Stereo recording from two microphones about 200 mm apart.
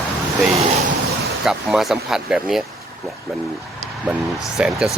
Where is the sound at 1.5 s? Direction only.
Centre (ahead or behind).